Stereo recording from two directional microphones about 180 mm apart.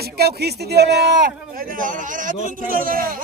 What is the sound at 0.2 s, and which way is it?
Speech, 65° right (ahead or behind).